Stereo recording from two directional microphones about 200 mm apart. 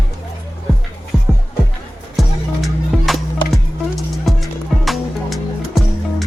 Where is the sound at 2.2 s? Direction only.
Centre (ahead or behind).